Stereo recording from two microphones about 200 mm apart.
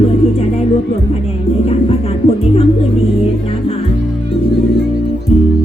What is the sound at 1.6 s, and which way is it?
Music, 30° left (ahead or behind).